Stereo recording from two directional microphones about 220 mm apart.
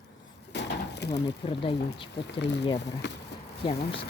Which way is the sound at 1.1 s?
25° left (ahead or behind).